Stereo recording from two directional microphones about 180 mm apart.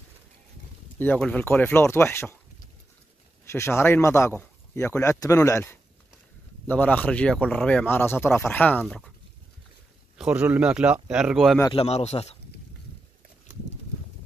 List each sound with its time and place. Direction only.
0.9 s speech: 10° left (ahead or behind)
3.5 s speech: 15° left (ahead or behind)
10.1 s speech: 5° right (ahead or behind)
11.8 s speech: 35° left (ahead or behind)